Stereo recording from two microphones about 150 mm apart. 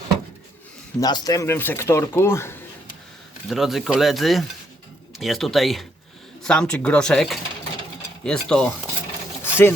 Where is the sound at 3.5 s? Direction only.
Centre (ahead or behind).